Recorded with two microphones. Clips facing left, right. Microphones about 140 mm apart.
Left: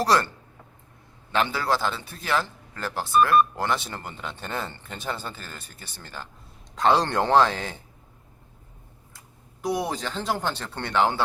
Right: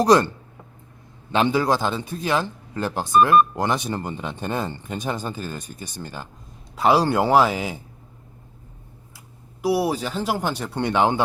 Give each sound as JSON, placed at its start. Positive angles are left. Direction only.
{"t": 0.0, "sound": "a man's voice", "side_deg": -20}
{"t": 1.3, "sound": "a man's voice", "side_deg": -20}
{"t": 9.1, "sound": "speech", "side_deg": -10}